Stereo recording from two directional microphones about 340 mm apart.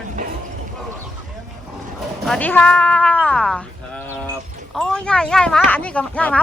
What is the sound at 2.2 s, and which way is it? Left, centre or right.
Cat, centre.